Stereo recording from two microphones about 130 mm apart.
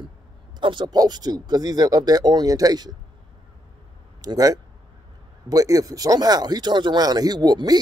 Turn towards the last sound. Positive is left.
turn(degrees=-30)  # may be behind; listen again after turning